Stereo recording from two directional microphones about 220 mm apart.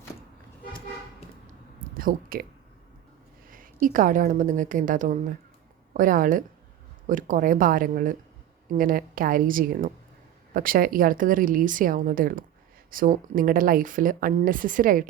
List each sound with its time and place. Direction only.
1.8 s speech: 40° right (ahead or behind)
3.5 s speech: 40° right (ahead or behind)